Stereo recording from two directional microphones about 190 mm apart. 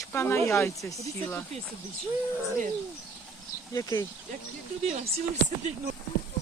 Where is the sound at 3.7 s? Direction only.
20° left (ahead or behind).